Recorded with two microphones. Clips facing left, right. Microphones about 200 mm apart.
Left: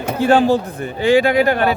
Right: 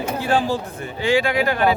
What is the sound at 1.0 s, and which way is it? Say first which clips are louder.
Speech: left 6 dB; 55° left (ahead or behind).